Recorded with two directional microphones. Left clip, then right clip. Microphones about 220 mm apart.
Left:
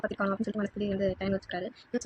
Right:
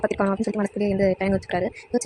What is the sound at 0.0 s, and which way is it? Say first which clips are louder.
Speech: right 8 dB; 35° right (ahead or behind).